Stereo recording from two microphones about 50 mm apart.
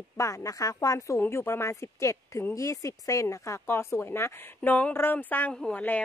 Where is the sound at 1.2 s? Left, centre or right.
Left.